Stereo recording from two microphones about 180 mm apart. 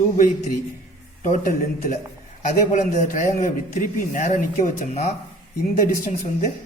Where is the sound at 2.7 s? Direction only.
40° left (ahead or behind).